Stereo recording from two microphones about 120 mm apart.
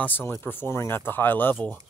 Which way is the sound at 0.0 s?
15° left (ahead or behind).